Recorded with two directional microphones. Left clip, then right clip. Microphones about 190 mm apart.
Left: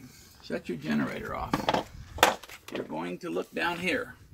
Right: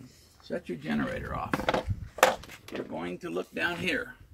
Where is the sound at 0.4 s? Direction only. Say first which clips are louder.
Left 1 dB; 15° right (ahead or behind).